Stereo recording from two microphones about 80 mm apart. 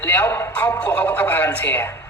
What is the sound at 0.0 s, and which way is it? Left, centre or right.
A man's voice, left.